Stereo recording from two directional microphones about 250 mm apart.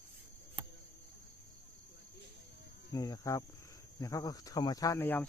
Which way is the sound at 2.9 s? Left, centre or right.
Centre.